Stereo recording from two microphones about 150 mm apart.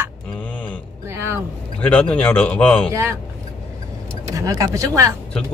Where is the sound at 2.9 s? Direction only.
20° right (ahead or behind).